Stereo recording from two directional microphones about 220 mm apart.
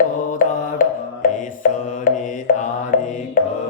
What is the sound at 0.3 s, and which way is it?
Music, 40° left (ahead or behind).